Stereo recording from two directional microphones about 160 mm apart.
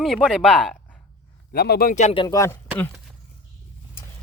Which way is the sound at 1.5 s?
70° left (ahead or behind).